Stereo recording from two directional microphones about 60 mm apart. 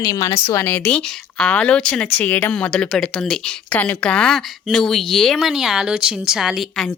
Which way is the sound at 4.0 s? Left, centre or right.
Centre.